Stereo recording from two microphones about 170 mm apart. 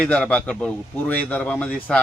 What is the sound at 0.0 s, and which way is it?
A man's voice, 5° left (ahead or behind).